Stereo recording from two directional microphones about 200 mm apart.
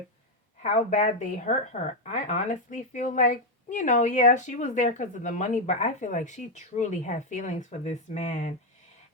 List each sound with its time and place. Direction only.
0.6 s speech: 35° left (ahead or behind)